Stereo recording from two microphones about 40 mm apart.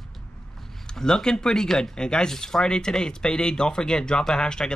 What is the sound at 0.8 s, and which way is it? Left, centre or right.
Speech, centre.